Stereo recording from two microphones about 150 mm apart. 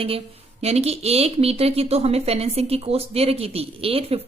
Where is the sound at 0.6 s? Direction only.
45° right (ahead or behind).